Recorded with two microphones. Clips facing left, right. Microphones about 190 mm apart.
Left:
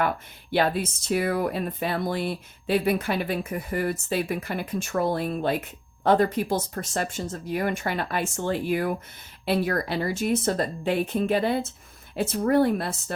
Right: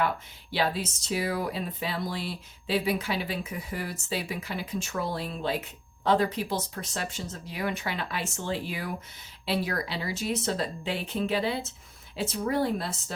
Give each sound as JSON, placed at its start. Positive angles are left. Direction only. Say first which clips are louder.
{"t": 0.5, "sound": "speech", "louder": "left 5 dB", "side_deg": 55}